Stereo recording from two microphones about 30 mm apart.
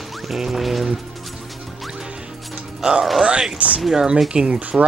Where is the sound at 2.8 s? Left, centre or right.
Centre.